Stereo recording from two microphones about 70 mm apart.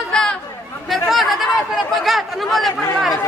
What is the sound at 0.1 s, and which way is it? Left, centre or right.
Chatter, centre.